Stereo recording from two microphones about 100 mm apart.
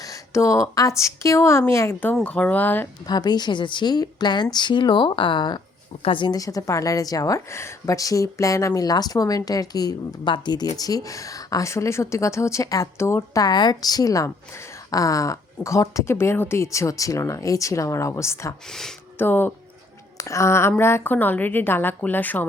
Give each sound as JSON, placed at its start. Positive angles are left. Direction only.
{"t": 0.0, "sound": "a woman's voice", "side_deg": 30}
{"t": 3.1, "sound": "a woman's voice", "side_deg": 45}
{"t": 6.0, "sound": "speech", "side_deg": 60}
{"t": 6.3, "sound": "speech", "side_deg": 35}
{"t": 13.4, "sound": "speech", "side_deg": 45}
{"t": 18.7, "sound": "speech", "side_deg": 5}
{"t": 19.2, "sound": "a woman's voice", "side_deg": 20}
{"t": 20.1, "sound": "a woman's voice", "side_deg": 30}